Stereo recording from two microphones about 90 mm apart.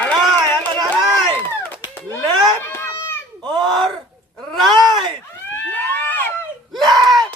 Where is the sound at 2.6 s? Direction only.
25° left (ahead or behind).